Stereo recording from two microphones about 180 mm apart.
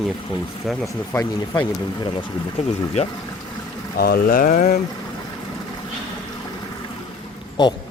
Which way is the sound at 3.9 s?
55° left (ahead or behind).